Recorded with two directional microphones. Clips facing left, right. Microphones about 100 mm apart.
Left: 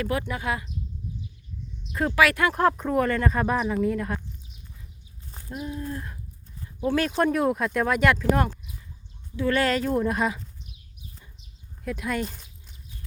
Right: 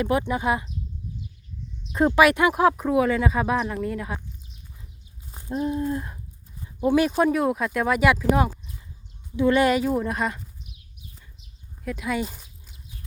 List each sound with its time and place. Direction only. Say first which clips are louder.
0.0 s speech: right 5 dB; 20° right (ahead or behind)
2.0 s speech: right 4 dB; 20° right (ahead or behind)
2.6 s speech: right 2 dB; 5° right (ahead or behind)
5.3 s a sound: right 7 dB; 15° right (ahead or behind)
5.5 s speech: right 8 dB; 30° right (ahead or behind)
5.8 s speech: right 6 dB; 20° right (ahead or behind); by 10.4 s centre (ahead or behind)
11.3 s a sound: right 1 dB; centre (ahead or behind)